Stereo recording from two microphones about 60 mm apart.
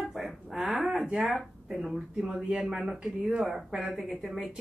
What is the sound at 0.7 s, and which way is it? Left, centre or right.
A woman's voice, centre.